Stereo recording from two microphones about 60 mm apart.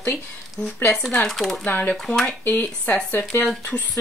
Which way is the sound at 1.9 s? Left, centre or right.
Centre.